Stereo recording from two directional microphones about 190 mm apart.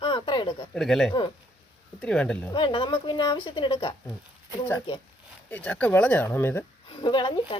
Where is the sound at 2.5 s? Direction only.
25° left (ahead or behind).